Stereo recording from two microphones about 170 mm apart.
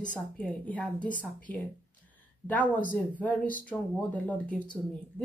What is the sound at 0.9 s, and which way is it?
Speech, 50° left (ahead or behind).